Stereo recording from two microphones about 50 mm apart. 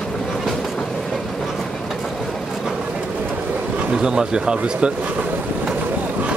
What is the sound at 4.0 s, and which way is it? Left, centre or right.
Speech, centre.